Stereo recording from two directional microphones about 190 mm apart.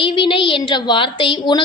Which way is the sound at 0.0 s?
25° left (ahead or behind).